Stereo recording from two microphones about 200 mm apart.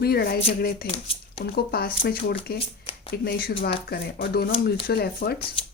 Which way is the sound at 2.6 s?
25° left (ahead or behind).